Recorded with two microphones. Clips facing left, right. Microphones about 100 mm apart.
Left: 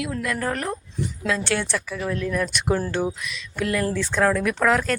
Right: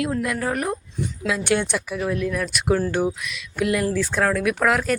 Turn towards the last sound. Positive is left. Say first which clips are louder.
# even
turn(degrees=-10)  # may be behind; listen again after turning